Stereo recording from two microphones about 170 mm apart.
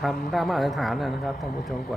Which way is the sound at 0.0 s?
Centre (ahead or behind).